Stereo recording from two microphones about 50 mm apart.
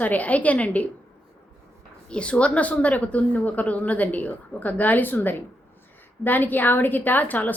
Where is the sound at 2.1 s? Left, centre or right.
Left.